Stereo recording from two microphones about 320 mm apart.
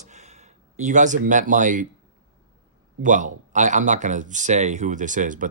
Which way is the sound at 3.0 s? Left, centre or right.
Right.